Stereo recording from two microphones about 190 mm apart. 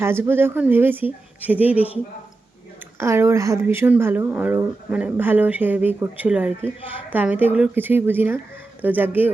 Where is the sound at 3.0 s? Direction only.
15° right (ahead or behind).